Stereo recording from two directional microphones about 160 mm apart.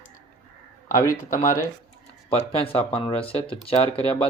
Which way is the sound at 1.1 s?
60° left (ahead or behind).